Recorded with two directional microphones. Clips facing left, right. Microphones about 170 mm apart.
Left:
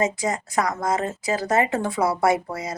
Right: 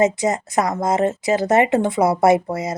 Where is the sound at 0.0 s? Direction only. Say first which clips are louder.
Right 6 dB; 20° right (ahead or behind).